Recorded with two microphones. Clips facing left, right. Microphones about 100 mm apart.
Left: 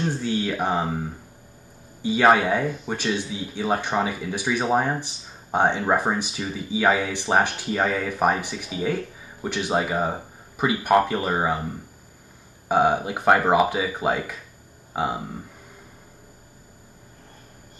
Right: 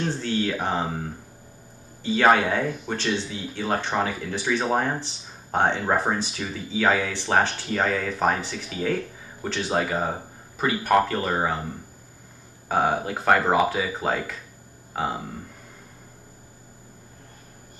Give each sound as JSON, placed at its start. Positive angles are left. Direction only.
{"t": 0.1, "sound": "speech", "side_deg": 10}
{"t": 2.0, "sound": "speech", "side_deg": 10}
{"t": 12.6, "sound": "speech", "side_deg": 15}